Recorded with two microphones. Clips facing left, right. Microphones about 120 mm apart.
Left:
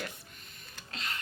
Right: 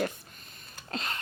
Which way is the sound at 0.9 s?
40° right (ahead or behind).